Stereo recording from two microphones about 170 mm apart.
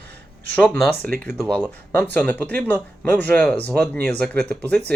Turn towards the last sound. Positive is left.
turn(degrees=10)  # may be behind; listen again after turning